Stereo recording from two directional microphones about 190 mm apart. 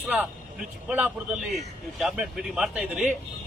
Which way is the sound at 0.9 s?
10° right (ahead or behind).